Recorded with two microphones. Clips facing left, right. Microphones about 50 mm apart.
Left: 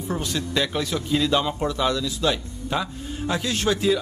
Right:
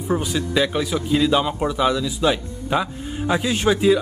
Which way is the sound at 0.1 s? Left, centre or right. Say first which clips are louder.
Right 5 dB; centre.